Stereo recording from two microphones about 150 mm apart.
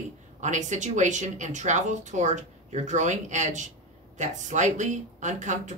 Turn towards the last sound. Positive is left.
turn(degrees=-55)  # may be behind; listen again after turning